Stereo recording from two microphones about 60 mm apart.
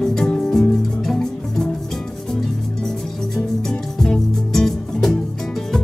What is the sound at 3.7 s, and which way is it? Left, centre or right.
Music, centre.